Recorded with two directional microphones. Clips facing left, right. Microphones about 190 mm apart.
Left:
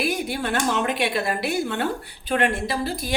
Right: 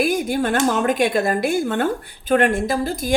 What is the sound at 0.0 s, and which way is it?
Speech, 45° right (ahead or behind).